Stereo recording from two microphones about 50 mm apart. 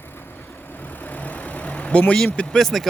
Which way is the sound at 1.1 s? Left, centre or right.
Left.